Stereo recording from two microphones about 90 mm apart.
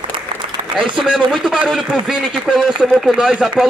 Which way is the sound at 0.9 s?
5° right (ahead or behind).